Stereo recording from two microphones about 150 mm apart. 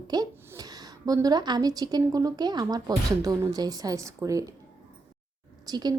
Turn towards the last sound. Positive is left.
turn(degrees=-25)  # may be behind; listen again after turning